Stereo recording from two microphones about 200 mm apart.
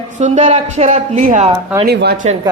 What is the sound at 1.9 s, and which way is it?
Speech, 55° right (ahead or behind).